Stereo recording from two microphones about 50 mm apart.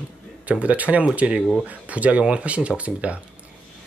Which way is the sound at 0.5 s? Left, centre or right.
Right.